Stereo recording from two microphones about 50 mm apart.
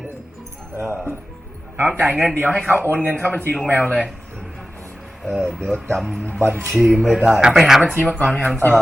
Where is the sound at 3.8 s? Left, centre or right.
Left.